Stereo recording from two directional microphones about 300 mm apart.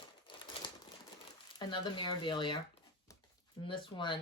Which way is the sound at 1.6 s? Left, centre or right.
Centre.